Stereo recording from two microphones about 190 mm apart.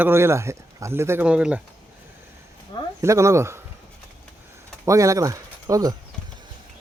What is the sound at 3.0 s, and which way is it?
Speech, 15° right (ahead or behind).